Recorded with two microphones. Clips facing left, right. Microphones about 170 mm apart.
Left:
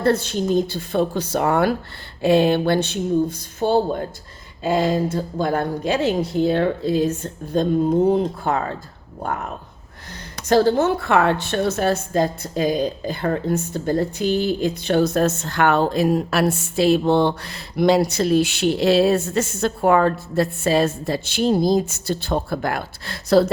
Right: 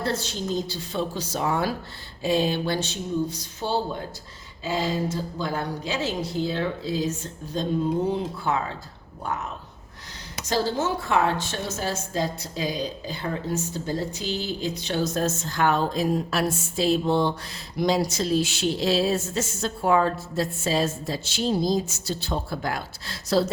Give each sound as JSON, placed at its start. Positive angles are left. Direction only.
{"t": 0.0, "sound": "a woman's voice", "side_deg": 55}
{"t": 10.5, "sound": "a woman's voice", "side_deg": 55}